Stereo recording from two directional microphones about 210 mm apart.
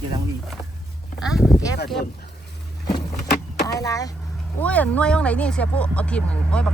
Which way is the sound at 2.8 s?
20° left (ahead or behind).